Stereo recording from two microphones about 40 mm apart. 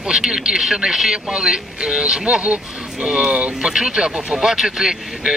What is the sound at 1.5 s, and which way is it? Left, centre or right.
Speech, centre.